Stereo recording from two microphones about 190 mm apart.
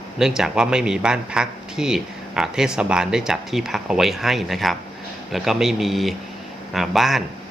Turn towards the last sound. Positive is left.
turn(degrees=0)  # may be behind; listen again after turning